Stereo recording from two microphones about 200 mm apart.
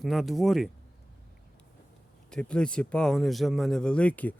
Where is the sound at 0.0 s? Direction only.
Centre (ahead or behind).